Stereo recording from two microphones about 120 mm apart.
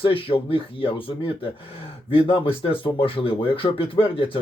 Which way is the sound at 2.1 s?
50° left (ahead or behind).